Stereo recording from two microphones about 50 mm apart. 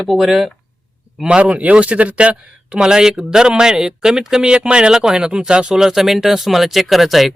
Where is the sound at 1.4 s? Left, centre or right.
Right.